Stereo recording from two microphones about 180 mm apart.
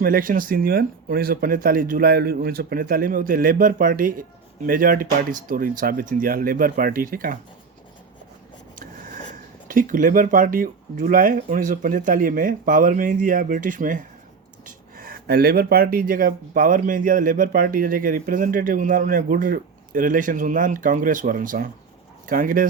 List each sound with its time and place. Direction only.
0.0 s speech: 50° right (ahead or behind)
9.6 s speech: 50° right (ahead or behind)